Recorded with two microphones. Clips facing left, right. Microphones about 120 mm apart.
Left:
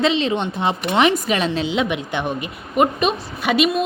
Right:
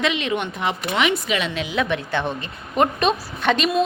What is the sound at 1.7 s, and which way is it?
A woman's voice, 20° left (ahead or behind).